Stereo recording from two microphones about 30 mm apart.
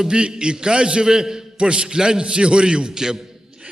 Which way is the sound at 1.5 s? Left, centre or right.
Right.